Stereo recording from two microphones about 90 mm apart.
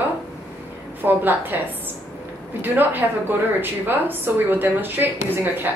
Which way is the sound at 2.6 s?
20° right (ahead or behind).